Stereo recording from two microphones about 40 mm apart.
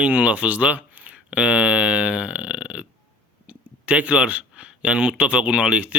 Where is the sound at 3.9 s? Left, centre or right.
Right.